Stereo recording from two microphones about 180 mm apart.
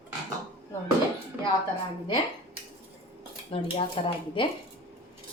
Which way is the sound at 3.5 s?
30° left (ahead or behind).